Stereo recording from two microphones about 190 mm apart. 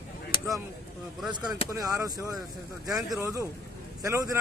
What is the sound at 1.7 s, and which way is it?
Speech, 15° right (ahead or behind).